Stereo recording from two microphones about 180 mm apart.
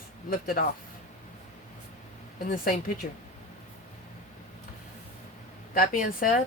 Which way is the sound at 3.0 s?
55° left (ahead or behind).